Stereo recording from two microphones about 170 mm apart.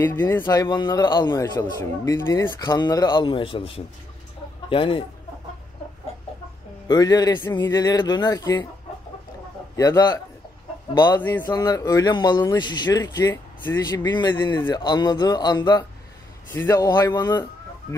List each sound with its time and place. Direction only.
0.0 s a man's voice: 10° left (ahead or behind); by 5.0 s 30° left (ahead or behind)
6.9 s a man's voice: 20° left (ahead or behind)
9.8 s a man's voice: 20° left (ahead or behind)
11.1 s a man's voice: 10° left (ahead or behind)